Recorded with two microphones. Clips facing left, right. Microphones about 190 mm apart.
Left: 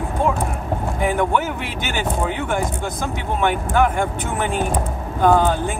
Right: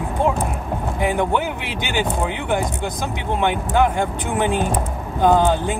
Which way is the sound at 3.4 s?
15° right (ahead or behind).